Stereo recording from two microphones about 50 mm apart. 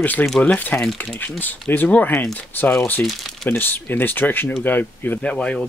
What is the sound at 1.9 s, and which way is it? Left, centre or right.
Speech, left.